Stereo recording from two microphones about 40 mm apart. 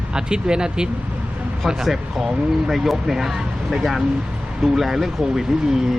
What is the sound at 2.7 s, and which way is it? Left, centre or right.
Speech, centre.